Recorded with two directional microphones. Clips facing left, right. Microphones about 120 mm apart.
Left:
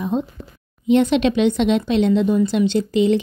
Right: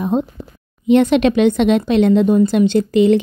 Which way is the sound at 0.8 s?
60° right (ahead or behind).